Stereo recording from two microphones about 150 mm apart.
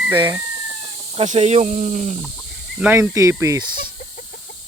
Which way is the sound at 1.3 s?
50° right (ahead or behind).